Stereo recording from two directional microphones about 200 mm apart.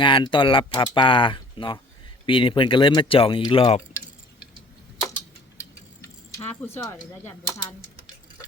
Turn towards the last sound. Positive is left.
turn(degrees=15)  # may be behind; listen again after turning